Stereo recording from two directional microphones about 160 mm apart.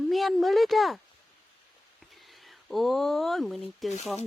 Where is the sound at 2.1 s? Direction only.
Centre (ahead or behind).